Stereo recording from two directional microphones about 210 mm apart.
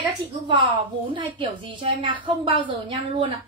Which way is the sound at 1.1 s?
25° right (ahead or behind).